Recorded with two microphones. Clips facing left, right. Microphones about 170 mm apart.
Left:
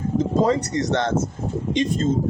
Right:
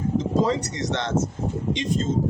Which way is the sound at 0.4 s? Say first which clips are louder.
Left 4 dB; 50° left (ahead or behind).